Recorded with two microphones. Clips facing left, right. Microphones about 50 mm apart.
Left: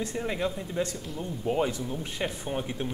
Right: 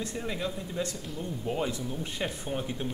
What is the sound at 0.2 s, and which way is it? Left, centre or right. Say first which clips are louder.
Speech: left 5 dB; centre.